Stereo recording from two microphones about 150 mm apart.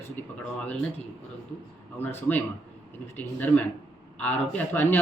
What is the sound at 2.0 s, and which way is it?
Speech, 15° left (ahead or behind).